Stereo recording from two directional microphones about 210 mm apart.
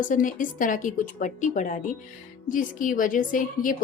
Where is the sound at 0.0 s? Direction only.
40° left (ahead or behind).